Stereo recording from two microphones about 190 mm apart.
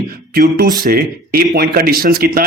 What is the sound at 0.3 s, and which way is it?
Speech, 55° right (ahead or behind).